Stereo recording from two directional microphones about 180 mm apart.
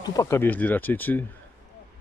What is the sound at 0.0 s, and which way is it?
Speech, 20° left (ahead or behind).